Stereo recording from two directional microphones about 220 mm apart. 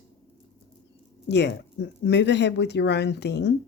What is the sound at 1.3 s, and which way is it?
Speech, 50° left (ahead or behind).